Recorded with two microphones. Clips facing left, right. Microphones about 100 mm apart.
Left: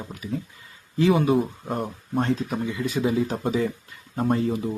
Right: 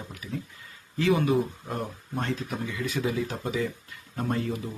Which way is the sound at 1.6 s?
25° left (ahead or behind).